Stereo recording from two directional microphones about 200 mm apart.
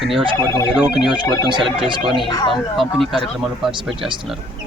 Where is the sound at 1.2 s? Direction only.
20° left (ahead or behind).